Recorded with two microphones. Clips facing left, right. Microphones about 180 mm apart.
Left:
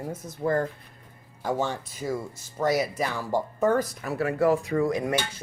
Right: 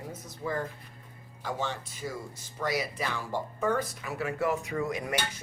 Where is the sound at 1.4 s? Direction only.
45° left (ahead or behind).